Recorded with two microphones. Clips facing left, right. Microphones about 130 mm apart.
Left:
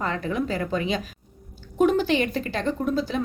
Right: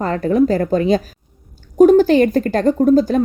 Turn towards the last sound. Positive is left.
turn(degrees=-45)  # may be behind; listen again after turning